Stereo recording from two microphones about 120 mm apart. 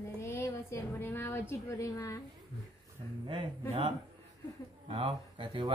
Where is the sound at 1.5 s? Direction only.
30° left (ahead or behind).